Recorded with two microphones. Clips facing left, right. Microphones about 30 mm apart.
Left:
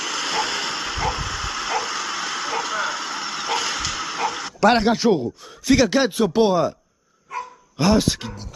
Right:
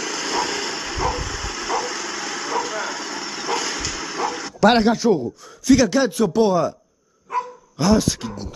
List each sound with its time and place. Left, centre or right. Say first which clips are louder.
0.0 s vehicle: even; centre
4.9 s a man's voice: even; left
5.7 s speech: right 1 dB; left
7.7 s speech: even; left